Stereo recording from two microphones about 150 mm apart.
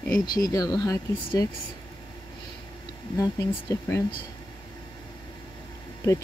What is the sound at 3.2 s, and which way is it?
Speech, 20° left (ahead or behind).